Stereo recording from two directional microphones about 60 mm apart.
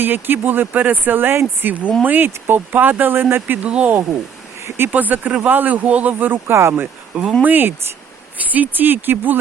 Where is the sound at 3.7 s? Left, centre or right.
Right.